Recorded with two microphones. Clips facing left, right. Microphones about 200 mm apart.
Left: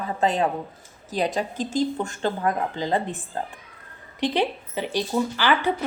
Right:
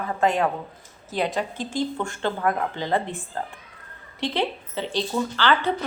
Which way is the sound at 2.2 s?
20° left (ahead or behind).